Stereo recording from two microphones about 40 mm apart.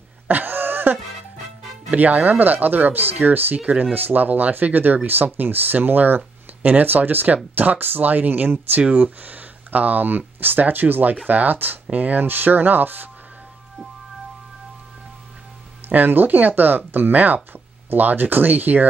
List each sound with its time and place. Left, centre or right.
0.3 s cough: right
2.0 s speech: right
3.5 s speech: right
3.9 s speech: right
7.8 s speech: right
12.2 s speech: right
16.1 s speech: right